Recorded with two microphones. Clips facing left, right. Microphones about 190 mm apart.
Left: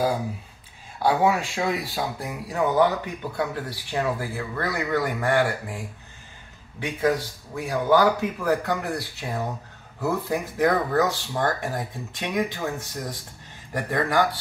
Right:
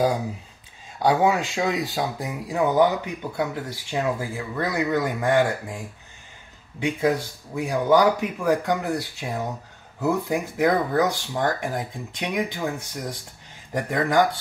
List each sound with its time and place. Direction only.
1.0 s speech: 20° right (ahead or behind)
6.8 s speech: 15° right (ahead or behind)